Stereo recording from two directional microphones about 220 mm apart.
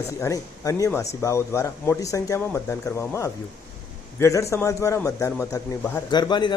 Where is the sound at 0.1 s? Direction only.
15° left (ahead or behind).